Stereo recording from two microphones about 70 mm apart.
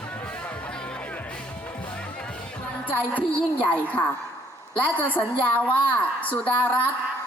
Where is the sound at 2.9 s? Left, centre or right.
Left.